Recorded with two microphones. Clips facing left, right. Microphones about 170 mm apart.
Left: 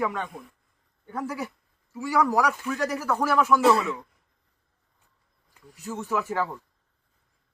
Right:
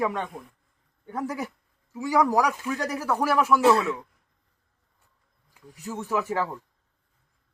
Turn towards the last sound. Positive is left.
turn(degrees=-10)  # may be behind; listen again after turning